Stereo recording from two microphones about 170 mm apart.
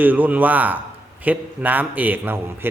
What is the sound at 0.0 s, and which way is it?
Speech, 10° right (ahead or behind).